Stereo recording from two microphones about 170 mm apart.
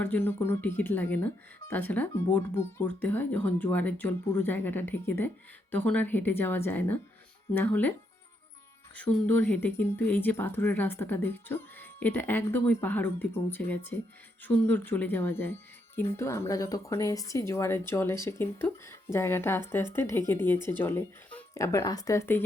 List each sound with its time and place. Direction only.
0.0 s speech: 10° left (ahead or behind)
9.2 s speech: 10° left (ahead or behind)